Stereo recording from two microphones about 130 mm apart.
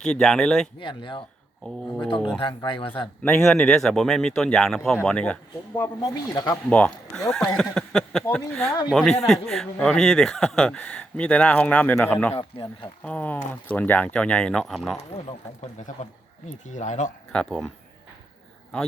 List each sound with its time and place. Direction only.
0.0 s speech: 5° left (ahead or behind)
0.8 s speech: 40° left (ahead or behind)
3.4 s speech: 5° left (ahead or behind)
5.8 s speech: 30° left (ahead or behind)
6.7 s speech: 10° left (ahead or behind)
12.3 s speech: 40° left (ahead or behind)
13.1 s speech: 10° left (ahead or behind)
15.9 s speech: 70° left (ahead or behind)
17.3 s speech: centre (ahead or behind)